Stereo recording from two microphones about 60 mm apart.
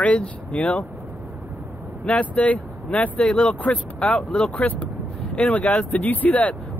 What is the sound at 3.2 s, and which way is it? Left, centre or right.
Speech, centre.